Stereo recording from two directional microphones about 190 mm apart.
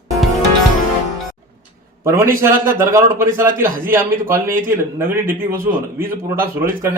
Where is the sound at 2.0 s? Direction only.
15° right (ahead or behind).